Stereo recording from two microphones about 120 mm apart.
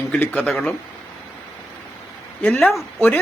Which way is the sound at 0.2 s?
15° left (ahead or behind).